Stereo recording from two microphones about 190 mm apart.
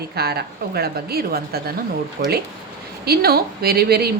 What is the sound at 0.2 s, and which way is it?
Speech, 55° right (ahead or behind).